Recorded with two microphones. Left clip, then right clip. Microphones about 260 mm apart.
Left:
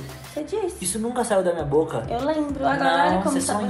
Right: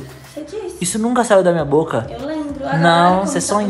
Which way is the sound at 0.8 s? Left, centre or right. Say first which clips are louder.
Right 8 dB; right.